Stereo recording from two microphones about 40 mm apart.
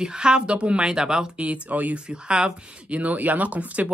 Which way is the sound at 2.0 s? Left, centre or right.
Right.